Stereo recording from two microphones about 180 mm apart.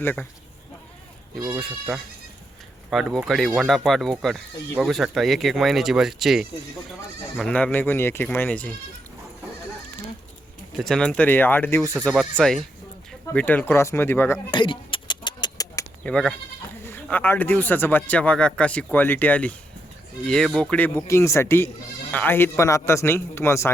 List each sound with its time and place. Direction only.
0.0 s speech: 10° left (ahead or behind)
1.5 s speech: centre (ahead or behind)
10.8 s speech: 5° left (ahead or behind)
14.5 s a sound: 25° left (ahead or behind)
16.0 s speech: 5° left (ahead or behind)